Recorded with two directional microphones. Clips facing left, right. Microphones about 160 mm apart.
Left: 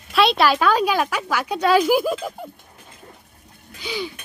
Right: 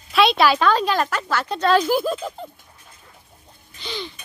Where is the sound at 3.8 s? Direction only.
10° left (ahead or behind).